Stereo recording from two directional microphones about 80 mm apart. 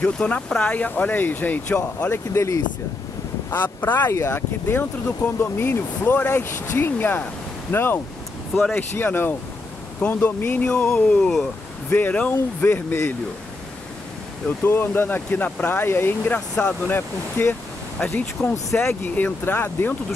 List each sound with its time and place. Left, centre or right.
0.0 s speech: centre
2.0 s speech: left
3.4 s speech: left
14.6 s speech: left
16.3 s speech: centre
17.9 s speech: centre
19.1 s speech: left